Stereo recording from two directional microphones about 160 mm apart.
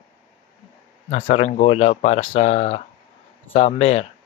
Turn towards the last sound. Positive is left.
turn(degrees=40)  # may be behind; listen again after turning